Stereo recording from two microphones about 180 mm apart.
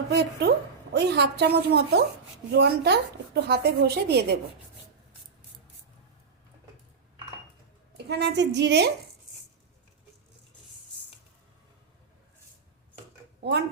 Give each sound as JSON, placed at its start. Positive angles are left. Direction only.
{"t": 0.1, "sound": "a woman's voice", "side_deg": -65}
{"t": 8.0, "sound": "a woman's voice", "side_deg": -65}